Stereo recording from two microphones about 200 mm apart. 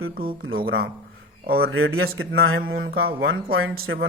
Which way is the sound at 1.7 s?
90° right.